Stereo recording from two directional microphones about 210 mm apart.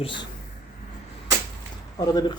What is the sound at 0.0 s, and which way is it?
Speech, 25° left (ahead or behind).